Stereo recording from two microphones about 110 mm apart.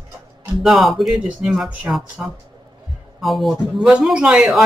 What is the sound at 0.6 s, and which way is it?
Speech, centre (ahead or behind).